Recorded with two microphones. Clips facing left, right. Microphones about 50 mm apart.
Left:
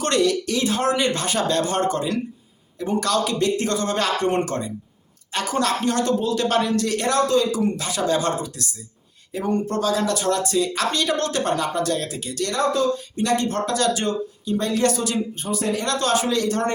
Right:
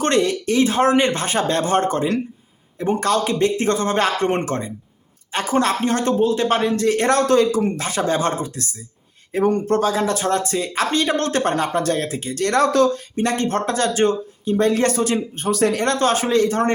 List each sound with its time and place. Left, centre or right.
0.0 s speech: right
7.1 s speech: right
9.3 s speech: right
12.5 s speech: right
13.1 s speech: right
15.4 s speech: right
15.8 s speech: right